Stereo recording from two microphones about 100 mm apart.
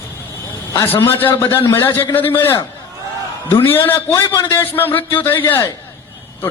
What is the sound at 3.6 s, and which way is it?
A man's voice, 20° left (ahead or behind).